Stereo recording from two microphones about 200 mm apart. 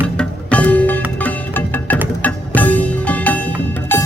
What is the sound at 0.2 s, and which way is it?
Music, 5° left (ahead or behind).